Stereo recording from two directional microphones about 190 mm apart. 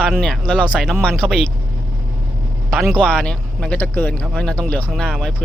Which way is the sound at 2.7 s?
Centre (ahead or behind).